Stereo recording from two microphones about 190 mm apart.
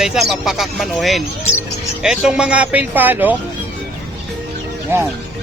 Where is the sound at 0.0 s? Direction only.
Centre (ahead or behind).